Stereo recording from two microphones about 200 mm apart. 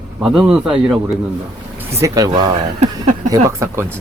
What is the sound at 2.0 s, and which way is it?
Speech, 15° right (ahead or behind).